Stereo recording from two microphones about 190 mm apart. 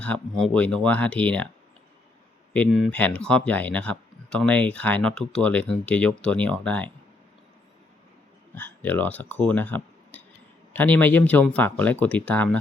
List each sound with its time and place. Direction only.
0.0 s speech: 5° left (ahead or behind)
2.5 s speech: 5° left (ahead or behind)
8.5 s speech: 10° left (ahead or behind)